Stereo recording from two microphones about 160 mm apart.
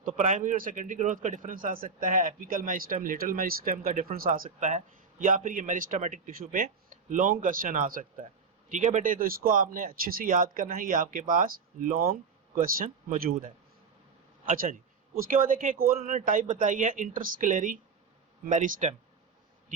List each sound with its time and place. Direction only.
0.0 s a man's voice: 50° right (ahead or behind)